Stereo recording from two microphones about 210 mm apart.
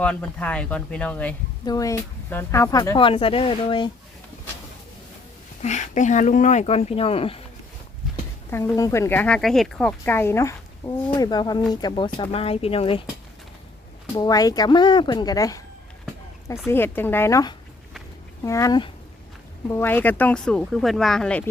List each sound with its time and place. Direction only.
0.0 s speech: 5° left (ahead or behind); by 3.9 s 25° left (ahead or behind)
5.6 s speech: 35° left (ahead or behind)
8.4 s speech: 10° left (ahead or behind)
14.2 s speech: 15° left (ahead or behind)
16.6 s speech: 10° left (ahead or behind)